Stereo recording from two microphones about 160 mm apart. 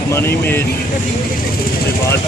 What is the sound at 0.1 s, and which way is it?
Speech, 15° left (ahead or behind).